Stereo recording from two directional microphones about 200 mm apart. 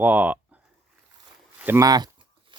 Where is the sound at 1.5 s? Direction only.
10° right (ahead or behind).